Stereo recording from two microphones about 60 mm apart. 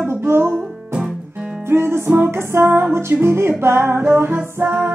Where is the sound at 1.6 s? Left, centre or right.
Right.